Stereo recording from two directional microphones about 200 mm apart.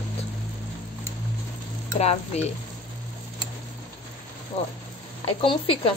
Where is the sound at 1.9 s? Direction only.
30° left (ahead or behind).